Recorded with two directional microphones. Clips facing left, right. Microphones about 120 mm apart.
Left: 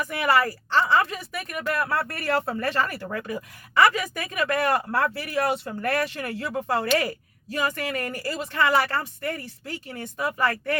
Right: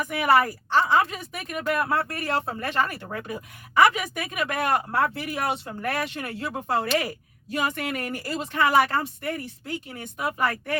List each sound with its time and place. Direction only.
0.4 s a woman's voice: 15° right (ahead or behind)